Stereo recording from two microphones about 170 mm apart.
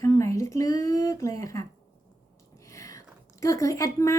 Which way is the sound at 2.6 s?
20° left (ahead or behind).